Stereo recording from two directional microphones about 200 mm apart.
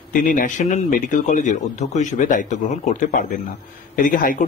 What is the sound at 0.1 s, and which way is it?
Speech, 40° left (ahead or behind).